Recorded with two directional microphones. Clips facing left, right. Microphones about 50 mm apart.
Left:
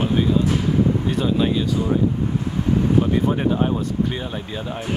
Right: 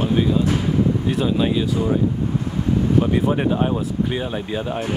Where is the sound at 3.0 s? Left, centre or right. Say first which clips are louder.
Right 1 dB; centre.